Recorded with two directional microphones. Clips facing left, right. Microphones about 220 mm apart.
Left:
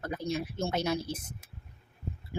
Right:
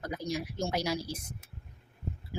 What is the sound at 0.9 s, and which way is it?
Speech, 25° left (ahead or behind).